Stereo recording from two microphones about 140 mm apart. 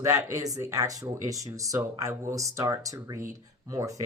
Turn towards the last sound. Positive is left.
turn(degrees=-25)  # may be behind; listen again after turning